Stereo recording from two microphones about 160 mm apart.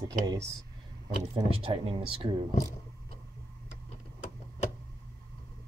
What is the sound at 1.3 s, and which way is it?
Speech, 35° right (ahead or behind).